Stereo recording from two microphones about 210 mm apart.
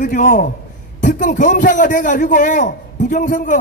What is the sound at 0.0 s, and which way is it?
A man's voice, 35° left (ahead or behind).